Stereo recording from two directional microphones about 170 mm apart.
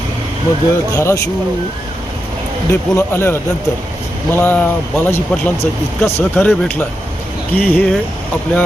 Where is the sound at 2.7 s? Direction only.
15° left (ahead or behind).